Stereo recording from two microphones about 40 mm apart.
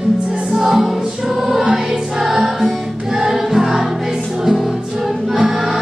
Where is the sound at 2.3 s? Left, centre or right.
Centre.